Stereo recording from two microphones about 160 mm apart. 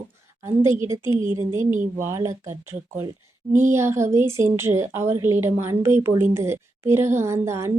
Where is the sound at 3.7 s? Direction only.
15° right (ahead or behind).